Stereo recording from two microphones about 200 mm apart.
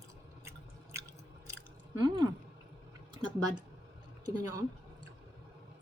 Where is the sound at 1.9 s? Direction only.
20° right (ahead or behind).